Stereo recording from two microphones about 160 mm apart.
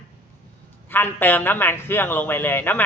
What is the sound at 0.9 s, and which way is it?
A man's voice, 10° left (ahead or behind).